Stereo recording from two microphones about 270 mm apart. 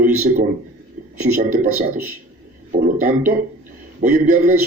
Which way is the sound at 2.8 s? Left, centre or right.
Right.